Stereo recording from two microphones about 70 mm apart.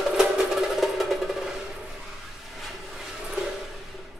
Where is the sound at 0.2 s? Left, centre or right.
Centre.